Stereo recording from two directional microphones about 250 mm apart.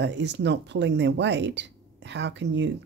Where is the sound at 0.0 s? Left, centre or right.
Right.